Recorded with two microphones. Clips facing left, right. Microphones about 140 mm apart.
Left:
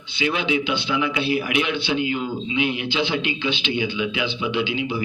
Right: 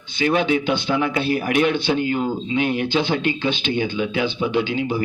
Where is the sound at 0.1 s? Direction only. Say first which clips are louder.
Right 4 dB; 45° right (ahead or behind).